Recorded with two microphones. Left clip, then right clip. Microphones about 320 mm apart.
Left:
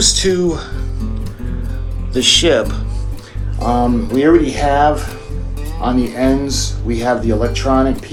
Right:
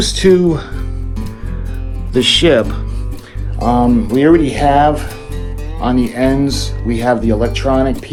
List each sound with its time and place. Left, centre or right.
0.0 s speech: right
2.1 s speech: right